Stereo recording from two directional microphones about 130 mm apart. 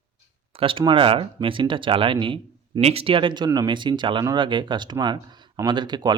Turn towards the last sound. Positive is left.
turn(degrees=-35)  # may be behind; listen again after turning